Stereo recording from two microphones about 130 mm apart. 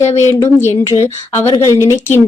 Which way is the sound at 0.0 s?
60° left (ahead or behind).